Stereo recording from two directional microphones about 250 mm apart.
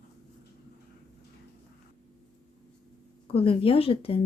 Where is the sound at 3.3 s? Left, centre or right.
Left.